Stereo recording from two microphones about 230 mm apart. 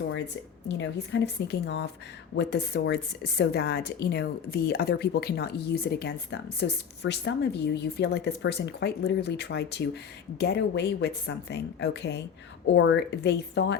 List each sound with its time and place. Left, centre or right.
0.8 s a woman's voice: left